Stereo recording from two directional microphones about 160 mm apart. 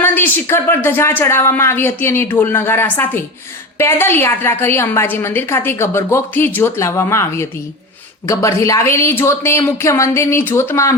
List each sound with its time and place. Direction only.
0.0 s a woman's voice: 15° left (ahead or behind)